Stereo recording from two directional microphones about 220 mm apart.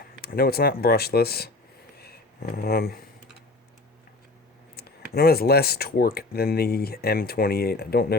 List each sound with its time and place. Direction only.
0.2 s speech: 45° left (ahead or behind)
2.0 s a sound: 45° left (ahead or behind)
4.8 s speech: 45° left (ahead or behind)